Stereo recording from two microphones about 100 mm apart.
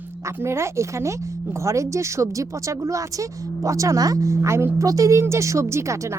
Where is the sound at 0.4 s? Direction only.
25° right (ahead or behind).